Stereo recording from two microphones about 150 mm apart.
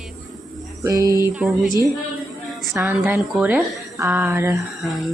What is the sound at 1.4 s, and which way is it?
Speech, 10° right (ahead or behind).